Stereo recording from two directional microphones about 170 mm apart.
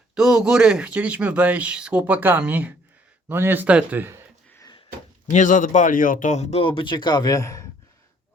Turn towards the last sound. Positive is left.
turn(degrees=20)  # may be behind; listen again after turning